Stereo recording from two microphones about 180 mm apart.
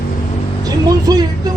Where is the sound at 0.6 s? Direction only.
20° right (ahead or behind).